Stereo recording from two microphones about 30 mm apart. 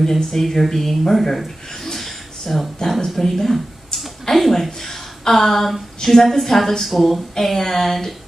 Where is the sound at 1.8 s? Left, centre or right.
Centre.